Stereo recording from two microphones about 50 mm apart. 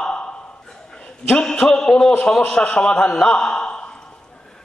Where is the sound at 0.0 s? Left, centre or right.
Centre.